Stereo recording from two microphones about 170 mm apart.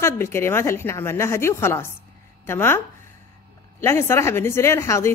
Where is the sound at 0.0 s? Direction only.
15° left (ahead or behind).